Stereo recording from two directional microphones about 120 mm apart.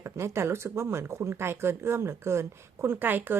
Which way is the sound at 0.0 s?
25° right (ahead or behind).